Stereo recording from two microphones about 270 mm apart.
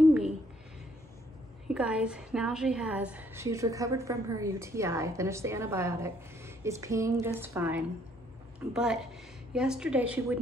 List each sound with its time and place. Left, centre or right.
1.7 s a woman's voice: centre